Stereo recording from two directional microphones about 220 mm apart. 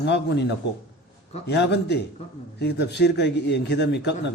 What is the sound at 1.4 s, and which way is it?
A man's voice, 50° left (ahead or behind).